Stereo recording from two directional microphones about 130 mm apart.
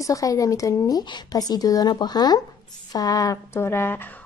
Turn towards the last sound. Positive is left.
turn(degrees=20)  # may be behind; listen again after turning